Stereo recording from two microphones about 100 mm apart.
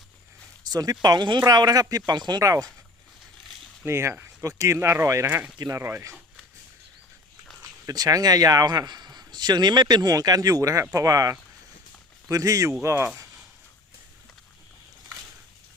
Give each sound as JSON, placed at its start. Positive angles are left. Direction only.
{"t": 0.7, "sound": "speech", "side_deg": -40}
{"t": 2.4, "sound": "a man's voice", "side_deg": -35}
{"t": 3.8, "sound": "a man's voice", "side_deg": -25}
{"t": 5.2, "sound": "speech", "side_deg": -20}
{"t": 7.9, "sound": "a man's voice", "side_deg": -40}